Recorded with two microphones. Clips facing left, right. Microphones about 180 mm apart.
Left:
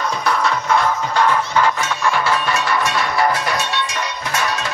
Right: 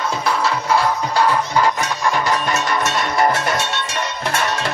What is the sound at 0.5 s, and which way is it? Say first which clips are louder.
Music: right 1 dB; 5° right (ahead or behind).